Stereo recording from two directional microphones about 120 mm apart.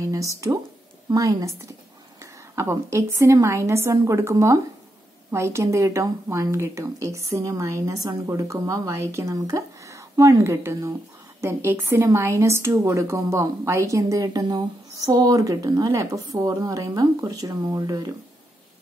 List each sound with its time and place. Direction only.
0.1 s a woman's voice: 30° right (ahead or behind)
2.5 s a woman's voice: 25° right (ahead or behind)